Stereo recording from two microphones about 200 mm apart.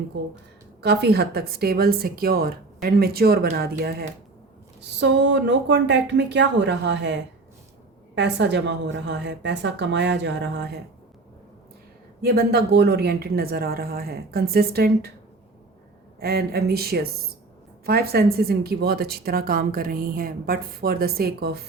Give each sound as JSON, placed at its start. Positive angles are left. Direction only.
{"t": 0.8, "sound": "a woman's voice", "side_deg": -55}
{"t": 12.2, "sound": "speech", "side_deg": -50}
{"t": 16.2, "sound": "speech", "side_deg": -50}